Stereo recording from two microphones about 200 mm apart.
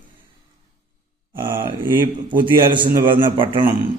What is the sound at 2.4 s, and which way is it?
Speech, 25° right (ahead or behind).